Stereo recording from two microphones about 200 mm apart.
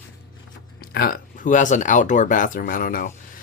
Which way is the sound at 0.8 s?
45° left (ahead or behind).